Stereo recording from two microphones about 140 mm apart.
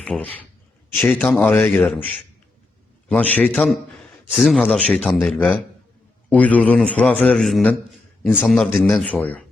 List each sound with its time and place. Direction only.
0.0 s speech: 10° left (ahead or behind)
3.1 s a man's voice: 10° left (ahead or behind)